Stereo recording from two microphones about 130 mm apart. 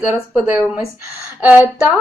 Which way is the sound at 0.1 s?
10° right (ahead or behind).